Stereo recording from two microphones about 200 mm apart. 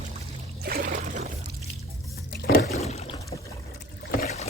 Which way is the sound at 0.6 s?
45° right (ahead or behind).